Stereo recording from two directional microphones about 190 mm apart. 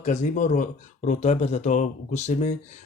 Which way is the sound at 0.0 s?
40° left (ahead or behind).